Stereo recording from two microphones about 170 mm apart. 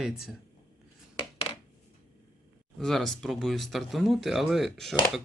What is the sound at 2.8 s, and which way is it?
Speech, centre (ahead or behind).